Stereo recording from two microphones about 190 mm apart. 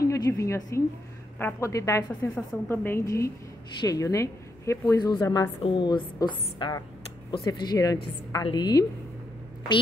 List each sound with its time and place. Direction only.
0.0 s a woman's voice: 15° left (ahead or behind)